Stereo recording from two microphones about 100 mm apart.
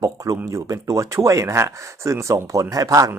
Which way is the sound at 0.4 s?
35° right (ahead or behind).